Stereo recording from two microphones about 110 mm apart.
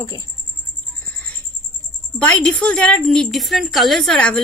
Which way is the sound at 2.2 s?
10° left (ahead or behind).